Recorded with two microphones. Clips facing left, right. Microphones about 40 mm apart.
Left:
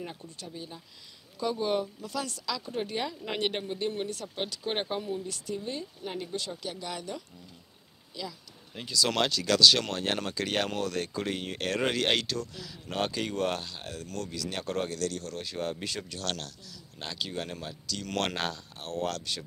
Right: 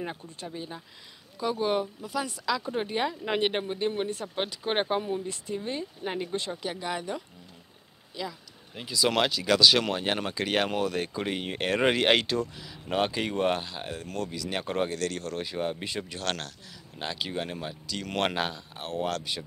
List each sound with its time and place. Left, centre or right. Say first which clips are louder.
0.0 s speech: right 4 dB; right
1.4 s speech: right 2 dB; centre